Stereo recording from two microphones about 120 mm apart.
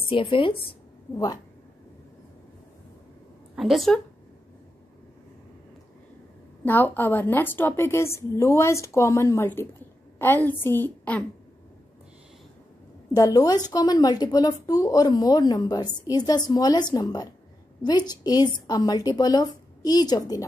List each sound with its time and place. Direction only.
0.1 s a woman's voice: 45° left (ahead or behind)
1.1 s speech: 30° left (ahead or behind)
3.5 s a woman's voice: centre (ahead or behind)
6.6 s a woman's voice: 15° left (ahead or behind)
13.1 s speech: 30° left (ahead or behind)